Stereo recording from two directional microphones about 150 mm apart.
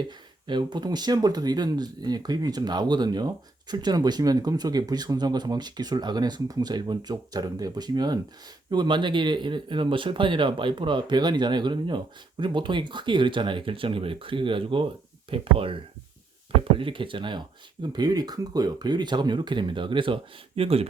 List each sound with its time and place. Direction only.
0.0 s speech: 30° right (ahead or behind)